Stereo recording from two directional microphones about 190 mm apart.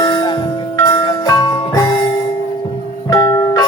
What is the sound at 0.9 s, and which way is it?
Jingle bell, 20° left (ahead or behind).